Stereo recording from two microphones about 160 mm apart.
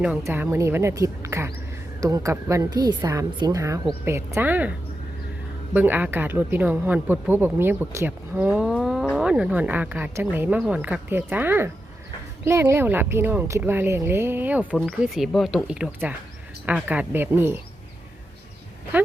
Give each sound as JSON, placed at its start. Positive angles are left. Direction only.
{"t": 0.0, "sound": "a woman's voice", "side_deg": -15}
{"t": 5.7, "sound": "speech", "side_deg": -10}
{"t": 14.8, "sound": "speech", "side_deg": 0}